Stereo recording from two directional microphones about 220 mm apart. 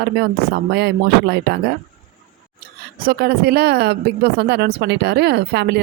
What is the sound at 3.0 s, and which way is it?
A woman's voice, 45° right (ahead or behind).